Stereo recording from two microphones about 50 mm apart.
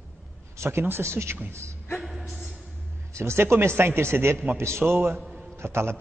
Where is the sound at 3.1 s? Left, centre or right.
Right.